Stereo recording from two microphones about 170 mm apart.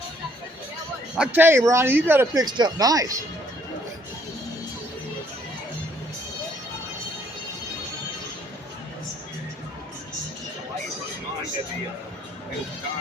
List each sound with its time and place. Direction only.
1.1 s speech: 5° right (ahead or behind)